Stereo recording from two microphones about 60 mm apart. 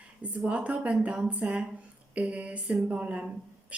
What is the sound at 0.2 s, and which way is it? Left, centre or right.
Speech, right.